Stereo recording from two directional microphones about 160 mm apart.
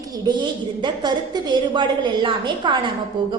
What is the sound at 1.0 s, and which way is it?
A woman's voice, 30° right (ahead or behind).